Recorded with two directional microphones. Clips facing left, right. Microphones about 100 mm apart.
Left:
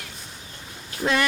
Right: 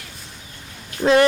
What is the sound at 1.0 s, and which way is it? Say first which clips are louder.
Speech: right 8 dB; 30° right (ahead or behind).